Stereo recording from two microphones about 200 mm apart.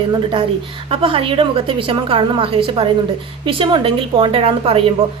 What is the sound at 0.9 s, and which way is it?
A woman's voice, 25° right (ahead or behind).